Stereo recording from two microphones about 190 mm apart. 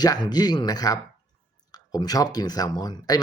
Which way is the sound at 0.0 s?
20° left (ahead or behind).